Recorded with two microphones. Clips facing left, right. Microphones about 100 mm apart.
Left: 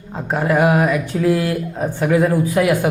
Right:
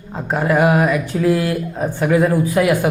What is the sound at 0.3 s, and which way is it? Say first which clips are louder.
Speech: right 1 dB; 30° right (ahead or behind).